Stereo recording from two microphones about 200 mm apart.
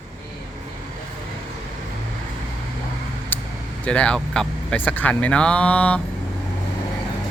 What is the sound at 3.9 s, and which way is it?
A man's voice, 5° left (ahead or behind).